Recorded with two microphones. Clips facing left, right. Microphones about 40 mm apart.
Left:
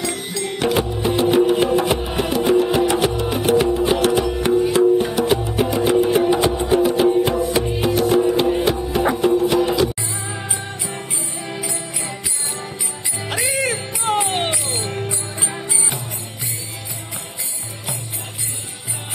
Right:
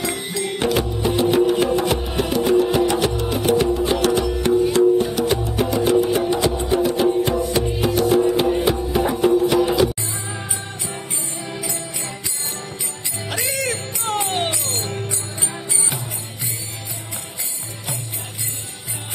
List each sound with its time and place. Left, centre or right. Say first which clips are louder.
0.0 s music: even; right
0.7 s music: left 2 dB; centre
11.6 s music: left 1 dB; centre
13.3 s music: left 3 dB; centre